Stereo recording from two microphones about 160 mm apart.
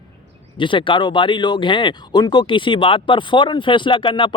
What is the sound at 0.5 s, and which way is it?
Speech, 30° left (ahead or behind).